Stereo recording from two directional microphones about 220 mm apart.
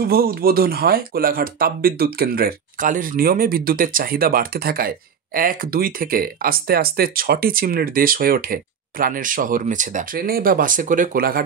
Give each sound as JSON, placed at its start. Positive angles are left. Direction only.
{"t": 0.0, "sound": "speech", "side_deg": -45}